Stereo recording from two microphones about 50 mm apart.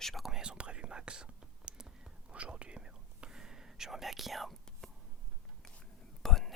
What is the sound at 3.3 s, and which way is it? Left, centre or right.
Whispering, centre.